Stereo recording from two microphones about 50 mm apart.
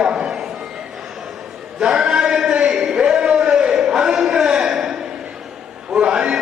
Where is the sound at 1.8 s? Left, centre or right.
Centre.